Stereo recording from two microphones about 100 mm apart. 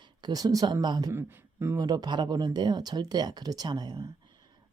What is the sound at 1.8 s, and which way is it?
Speech, 40° right (ahead or behind).